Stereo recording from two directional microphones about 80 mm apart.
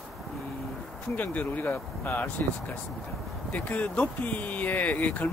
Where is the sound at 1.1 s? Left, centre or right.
Left.